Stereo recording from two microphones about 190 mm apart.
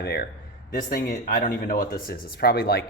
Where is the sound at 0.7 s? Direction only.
45° left (ahead or behind).